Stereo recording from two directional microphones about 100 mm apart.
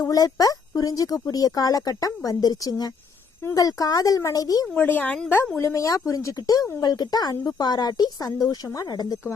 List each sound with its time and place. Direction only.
0.0 s speech: 40° left (ahead or behind)
4.8 s a woman's voice: 15° left (ahead or behind)
5.5 s speech: 30° left (ahead or behind)